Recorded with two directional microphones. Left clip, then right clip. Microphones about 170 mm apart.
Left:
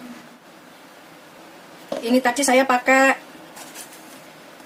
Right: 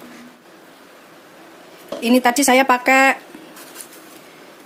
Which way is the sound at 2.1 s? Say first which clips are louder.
Right 3 dB; 45° right (ahead or behind).